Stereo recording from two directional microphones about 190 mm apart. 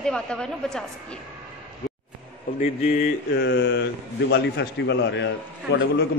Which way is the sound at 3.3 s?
65° left (ahead or behind).